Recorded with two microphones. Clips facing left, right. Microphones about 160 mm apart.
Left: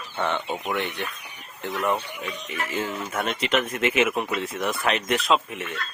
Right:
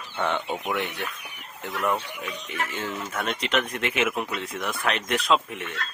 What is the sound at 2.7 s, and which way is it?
Speech, 10° left (ahead or behind).